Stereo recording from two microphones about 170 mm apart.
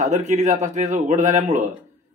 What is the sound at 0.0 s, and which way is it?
A man's voice, 45° right (ahead or behind).